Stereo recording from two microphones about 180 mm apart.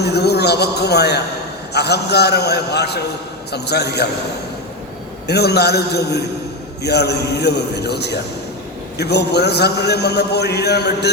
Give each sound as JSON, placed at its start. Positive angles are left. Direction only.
{"t": 0.0, "sound": "a man's voice", "side_deg": 65}
{"t": 5.3, "sound": "a man's voice", "side_deg": 65}